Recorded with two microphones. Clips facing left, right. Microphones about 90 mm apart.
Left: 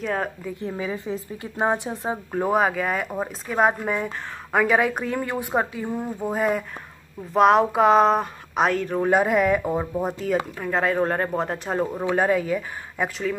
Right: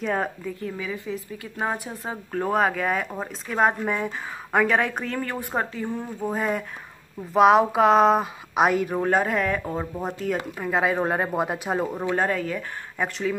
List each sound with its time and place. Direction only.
0.0 s speech: centre (ahead or behind)
0.6 s a woman's voice: 30° left (ahead or behind)
2.3 s speech: 10° left (ahead or behind); by 9.0 s 10° right (ahead or behind)
9.0 s speech: 10° left (ahead or behind)
12.1 s speech: 5° left (ahead or behind)